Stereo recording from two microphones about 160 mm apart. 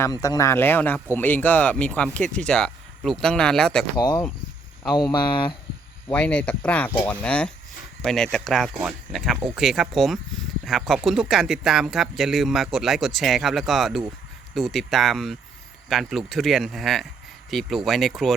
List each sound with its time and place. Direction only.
0.0 s speech: 20° left (ahead or behind); by 3.8 s 5° left (ahead or behind)
3.9 s speech: 25° left (ahead or behind)
6.1 s speech: 10° left (ahead or behind)